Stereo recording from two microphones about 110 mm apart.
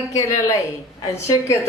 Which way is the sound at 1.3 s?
25° left (ahead or behind).